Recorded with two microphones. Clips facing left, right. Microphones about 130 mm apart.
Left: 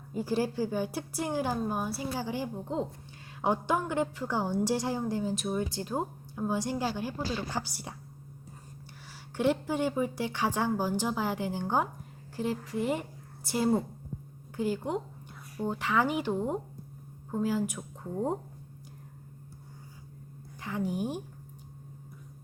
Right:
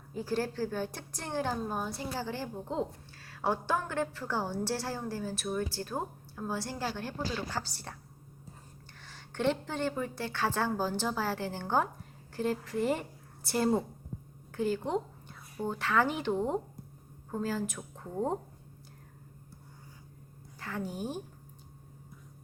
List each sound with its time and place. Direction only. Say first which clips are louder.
0.1 s a woman's voice: left 3 dB; 10° left (ahead or behind)
9.3 s a woman's voice: left 3 dB; 10° left (ahead or behind)
20.6 s a woman's voice: left 5 dB; 15° left (ahead or behind)